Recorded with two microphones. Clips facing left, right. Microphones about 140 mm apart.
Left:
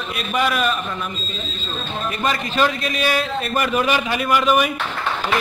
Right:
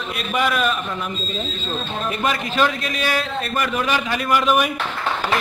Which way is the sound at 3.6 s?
15° left (ahead or behind).